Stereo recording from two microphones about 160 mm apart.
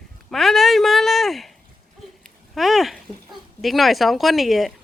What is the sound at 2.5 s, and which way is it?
Speech, centre (ahead or behind).